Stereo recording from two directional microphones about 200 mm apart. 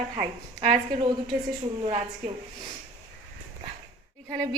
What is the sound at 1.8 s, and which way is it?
Speech, 30° right (ahead or behind).